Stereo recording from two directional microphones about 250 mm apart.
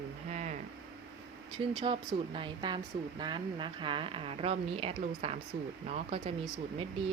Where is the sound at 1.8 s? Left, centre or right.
Centre.